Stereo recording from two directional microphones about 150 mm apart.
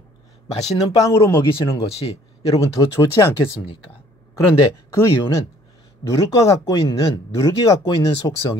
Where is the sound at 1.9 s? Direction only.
40° left (ahead or behind).